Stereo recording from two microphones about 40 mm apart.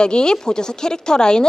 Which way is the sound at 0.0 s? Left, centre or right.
Left.